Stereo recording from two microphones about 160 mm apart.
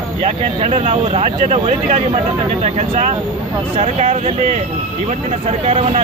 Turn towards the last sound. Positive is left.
turn(degrees=-40)  # may be behind; listen again after turning